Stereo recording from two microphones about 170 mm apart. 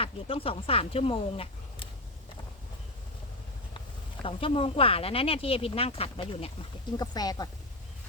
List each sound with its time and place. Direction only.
0.0 s speech: 35° left (ahead or behind)
3.8 s speech: 30° left (ahead or behind)